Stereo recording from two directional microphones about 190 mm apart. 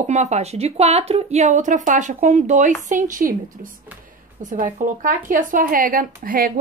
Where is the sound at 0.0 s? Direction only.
40° right (ahead or behind).